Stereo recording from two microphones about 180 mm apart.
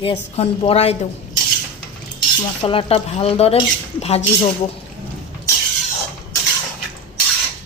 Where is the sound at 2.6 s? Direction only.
30° left (ahead or behind).